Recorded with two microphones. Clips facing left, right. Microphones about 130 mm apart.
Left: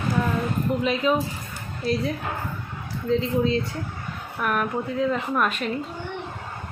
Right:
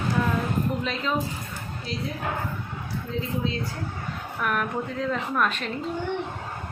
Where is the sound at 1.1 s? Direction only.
10° left (ahead or behind).